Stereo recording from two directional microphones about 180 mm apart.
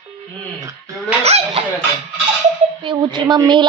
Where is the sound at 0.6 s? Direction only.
20° right (ahead or behind).